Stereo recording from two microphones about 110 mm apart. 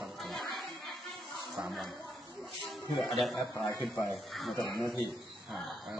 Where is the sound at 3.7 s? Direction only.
25° left (ahead or behind).